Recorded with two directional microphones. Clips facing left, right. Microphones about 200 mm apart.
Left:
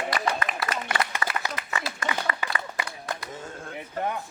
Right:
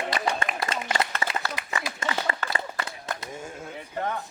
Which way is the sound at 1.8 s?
20° right (ahead or behind).